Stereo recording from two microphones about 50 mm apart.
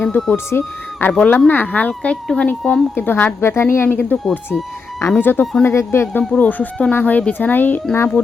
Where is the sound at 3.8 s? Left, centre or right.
Left.